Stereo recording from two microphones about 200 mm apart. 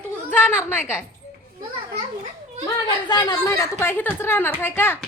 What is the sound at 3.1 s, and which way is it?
A woman's voice, 20° left (ahead or behind).